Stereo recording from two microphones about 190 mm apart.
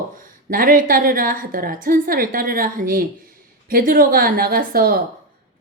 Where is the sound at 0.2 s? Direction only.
45° right (ahead or behind).